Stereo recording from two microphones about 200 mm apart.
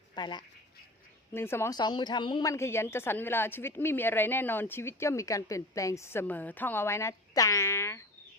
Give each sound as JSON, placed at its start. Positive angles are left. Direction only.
{"t": 0.1, "sound": "a woman's voice", "side_deg": 20}